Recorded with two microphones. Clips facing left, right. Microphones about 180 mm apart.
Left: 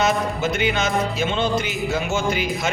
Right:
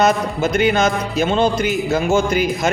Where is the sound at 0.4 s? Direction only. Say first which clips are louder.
Right 8 dB; 40° right (ahead or behind).